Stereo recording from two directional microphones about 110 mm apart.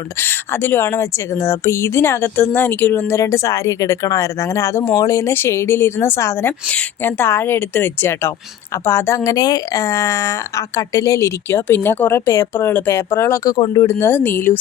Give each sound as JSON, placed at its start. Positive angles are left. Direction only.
{"t": 0.2, "sound": "a woman's voice", "side_deg": 20}